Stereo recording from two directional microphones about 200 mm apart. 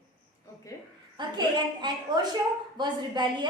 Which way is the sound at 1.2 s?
20° right (ahead or behind).